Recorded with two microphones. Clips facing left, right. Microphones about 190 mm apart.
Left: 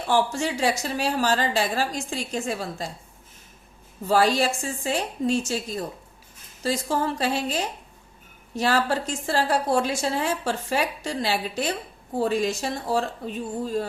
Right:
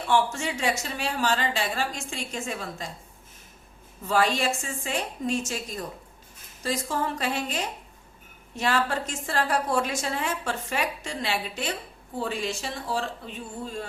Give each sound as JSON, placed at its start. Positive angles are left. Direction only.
{"t": 0.1, "sound": "a woman's voice", "side_deg": 35}
{"t": 4.0, "sound": "a woman's voice", "side_deg": 35}